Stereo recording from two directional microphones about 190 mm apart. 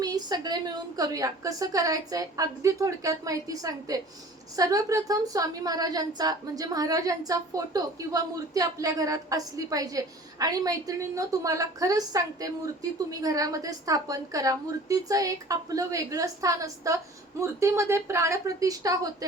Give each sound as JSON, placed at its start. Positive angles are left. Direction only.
{"t": 0.0, "sound": "a woman's voice", "side_deg": -20}